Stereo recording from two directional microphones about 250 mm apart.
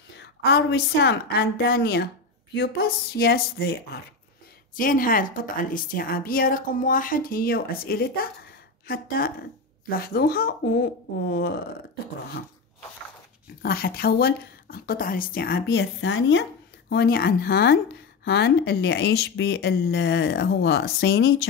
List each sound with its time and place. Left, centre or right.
0.2 s a woman's voice: left
13.6 s a woman's voice: left
16.9 s a woman's voice: left